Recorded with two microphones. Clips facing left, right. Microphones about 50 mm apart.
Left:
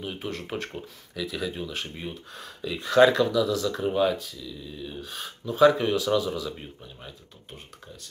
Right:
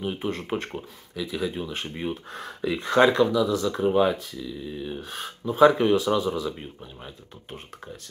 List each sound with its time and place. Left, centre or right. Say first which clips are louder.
0.0 s speech: right 4 dB; right
2.0 s speech: right 6 dB; right
2.9 s speech: even; right
3.9 s speech: right 3 dB; right